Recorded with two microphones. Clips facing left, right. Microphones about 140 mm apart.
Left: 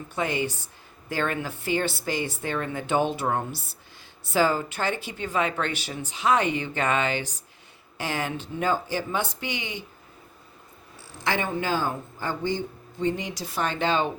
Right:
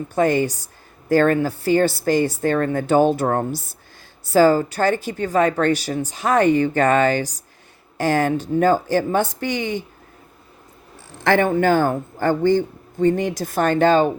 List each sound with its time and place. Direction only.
0.1 s a woman's voice: 45° right (ahead or behind)
11.2 s a woman's voice: 55° right (ahead or behind)